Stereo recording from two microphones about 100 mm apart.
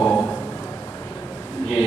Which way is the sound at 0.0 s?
15° left (ahead or behind).